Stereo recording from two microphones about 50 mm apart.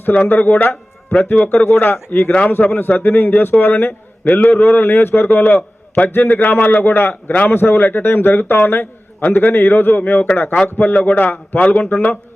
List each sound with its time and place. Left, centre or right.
0.1 s a man's voice: left
0.7 s a sound: centre
1.4 s a man's voice: left
1.7 s a man's voice: left
4.2 s a man's voice: left
7.5 s a man's voice: left
11.6 s a man's voice: left